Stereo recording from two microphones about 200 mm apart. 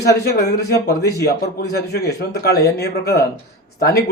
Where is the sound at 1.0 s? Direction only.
55° left (ahead or behind).